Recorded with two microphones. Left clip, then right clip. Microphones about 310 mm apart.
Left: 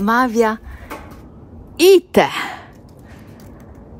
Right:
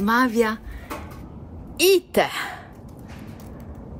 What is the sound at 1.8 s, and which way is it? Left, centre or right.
Speech, left.